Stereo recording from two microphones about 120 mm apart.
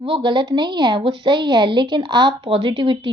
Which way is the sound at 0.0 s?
45° right (ahead or behind).